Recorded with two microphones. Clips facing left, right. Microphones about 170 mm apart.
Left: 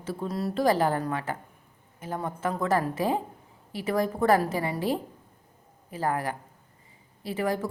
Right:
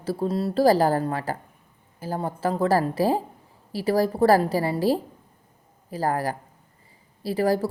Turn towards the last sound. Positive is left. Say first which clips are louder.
# right 6 dB
turn(degrees=-35)  # may be behind; listen again after turning